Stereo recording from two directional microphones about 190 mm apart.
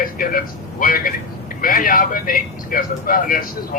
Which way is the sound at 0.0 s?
45° left (ahead or behind).